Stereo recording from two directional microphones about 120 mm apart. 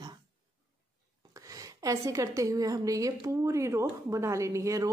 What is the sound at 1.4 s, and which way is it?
A woman's voice, 30° right (ahead or behind).